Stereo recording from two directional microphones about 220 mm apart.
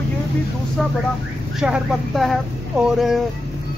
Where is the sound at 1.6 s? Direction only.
Centre (ahead or behind).